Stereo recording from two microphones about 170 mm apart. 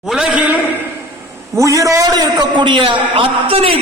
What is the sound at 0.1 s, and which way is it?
Speech, 5° right (ahead or behind).